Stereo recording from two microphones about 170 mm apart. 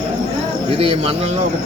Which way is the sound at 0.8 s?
35° right (ahead or behind).